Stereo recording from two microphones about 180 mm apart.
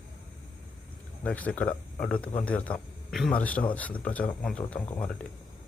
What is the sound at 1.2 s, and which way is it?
Speech, 10° left (ahead or behind).